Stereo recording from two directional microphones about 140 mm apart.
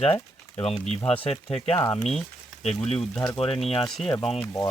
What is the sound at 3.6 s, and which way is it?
Speech, 40° left (ahead or behind).